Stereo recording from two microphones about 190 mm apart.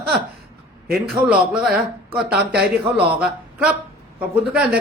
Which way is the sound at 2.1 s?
60° right (ahead or behind).